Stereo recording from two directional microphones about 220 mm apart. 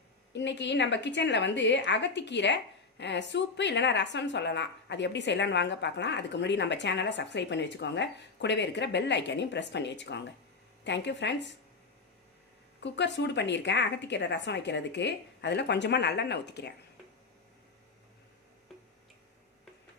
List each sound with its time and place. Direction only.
0.3 s speech: 55° left (ahead or behind)
12.8 s speech: 55° left (ahead or behind)